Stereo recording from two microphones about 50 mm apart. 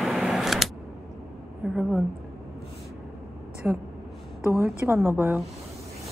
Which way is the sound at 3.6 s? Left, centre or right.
Centre.